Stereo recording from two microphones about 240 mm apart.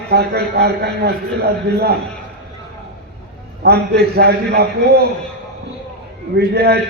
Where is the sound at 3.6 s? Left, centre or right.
Right.